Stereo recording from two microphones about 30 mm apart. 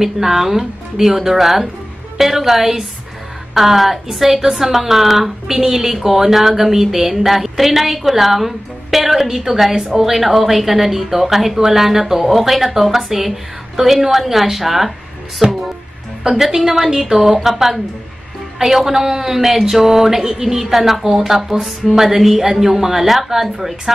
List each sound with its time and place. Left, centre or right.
0.0 s a woman's voice: centre
15.4 s a woman's voice: right
20.7 s a woman's voice: centre